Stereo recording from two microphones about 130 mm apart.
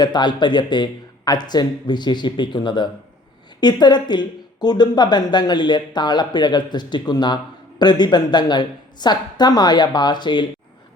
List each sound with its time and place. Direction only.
0.0 s a woman's voice: 35° left (ahead or behind)